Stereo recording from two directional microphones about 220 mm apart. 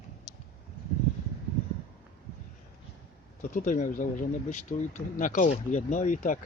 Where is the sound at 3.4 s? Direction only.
35° left (ahead or behind).